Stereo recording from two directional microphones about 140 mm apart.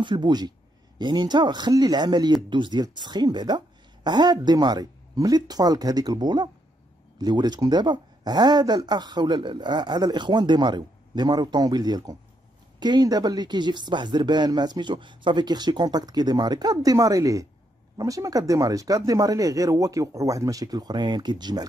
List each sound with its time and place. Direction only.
0.0 s speech: 30° right (ahead or behind)